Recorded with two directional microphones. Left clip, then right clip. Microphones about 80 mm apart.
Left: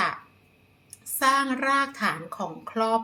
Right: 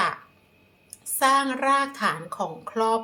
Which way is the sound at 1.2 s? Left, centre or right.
Right.